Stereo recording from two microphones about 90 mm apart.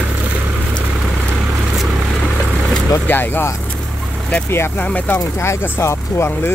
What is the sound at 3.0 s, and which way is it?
Speech, 25° left (ahead or behind).